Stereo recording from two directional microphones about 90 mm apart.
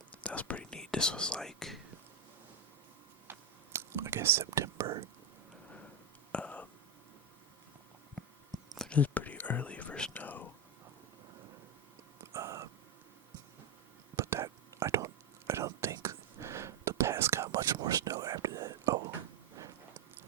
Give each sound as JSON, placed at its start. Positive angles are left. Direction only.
{"t": 0.2, "sound": "whispering", "side_deg": 15}
{"t": 3.2, "sound": "whispering", "side_deg": -30}
{"t": 6.3, "sound": "a sound", "side_deg": 15}
{"t": 8.2, "sound": "chewing", "side_deg": 0}
{"t": 8.7, "sound": "whispering", "side_deg": 5}
{"t": 9.0, "sound": "whispering", "side_deg": 15}
{"t": 12.3, "sound": "a sound", "side_deg": -35}
{"t": 14.2, "sound": "whispering", "side_deg": -30}
{"t": 17.5, "sound": "whispering", "side_deg": -45}